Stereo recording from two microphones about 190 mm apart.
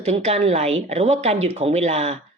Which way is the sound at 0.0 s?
35° right (ahead or behind).